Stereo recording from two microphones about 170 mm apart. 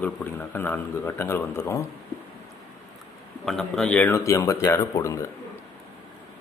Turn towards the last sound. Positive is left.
turn(degrees=15)  # may be behind; listen again after turning